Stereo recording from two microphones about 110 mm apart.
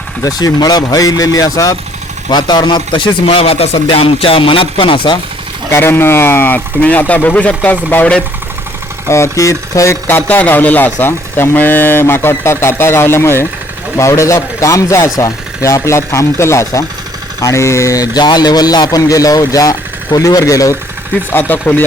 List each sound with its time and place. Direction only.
0.2 s speech: 35° left (ahead or behind)
5.7 s speech: 20° left (ahead or behind)
9.0 s speech: 25° left (ahead or behind)
21.3 s speech: 15° left (ahead or behind)